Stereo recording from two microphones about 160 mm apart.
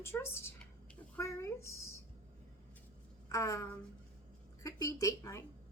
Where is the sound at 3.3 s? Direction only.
20° left (ahead or behind).